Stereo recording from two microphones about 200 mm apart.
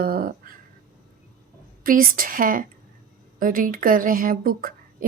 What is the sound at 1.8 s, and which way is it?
A woman's voice, 45° right (ahead or behind).